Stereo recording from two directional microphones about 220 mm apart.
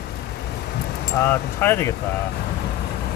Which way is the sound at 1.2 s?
10° left (ahead or behind).